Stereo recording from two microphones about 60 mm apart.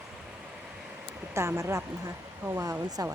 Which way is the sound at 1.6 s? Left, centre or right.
Right.